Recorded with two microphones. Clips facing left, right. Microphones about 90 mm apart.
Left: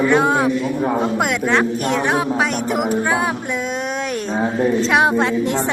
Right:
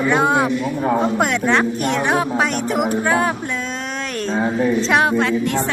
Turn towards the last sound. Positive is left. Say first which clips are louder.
# left 1 dB
turn(degrees=20)  # may be behind; listen again after turning